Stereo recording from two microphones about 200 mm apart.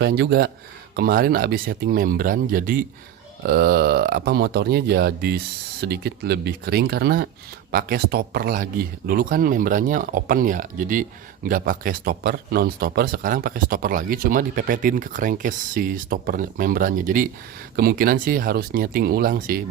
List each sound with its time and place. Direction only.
0.0 s speech: 55° right (ahead or behind)